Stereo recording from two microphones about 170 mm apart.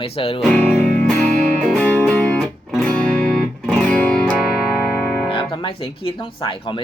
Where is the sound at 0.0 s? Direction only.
35° left (ahead or behind).